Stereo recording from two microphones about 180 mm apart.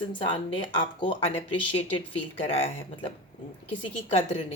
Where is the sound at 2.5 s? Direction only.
30° left (ahead or behind).